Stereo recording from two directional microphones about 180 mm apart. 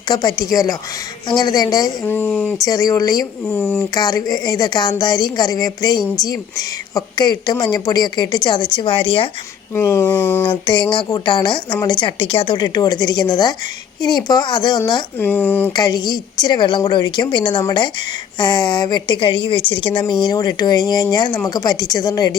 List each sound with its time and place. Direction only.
0.1 s a woman's voice: 25° left (ahead or behind); by 2.6 s 5° left (ahead or behind)
2.6 s a woman's voice: 20° left (ahead or behind)
9.7 s speech: 15° left (ahead or behind)
10.5 s a woman's voice: 25° left (ahead or behind)
15.2 s speech: 10° left (ahead or behind)
15.7 s a woman's voice: 20° left (ahead or behind)